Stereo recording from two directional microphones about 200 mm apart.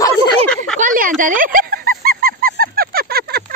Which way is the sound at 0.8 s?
45° right (ahead or behind).